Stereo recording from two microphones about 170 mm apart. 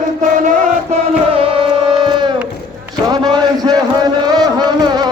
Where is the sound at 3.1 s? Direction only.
25° right (ahead or behind).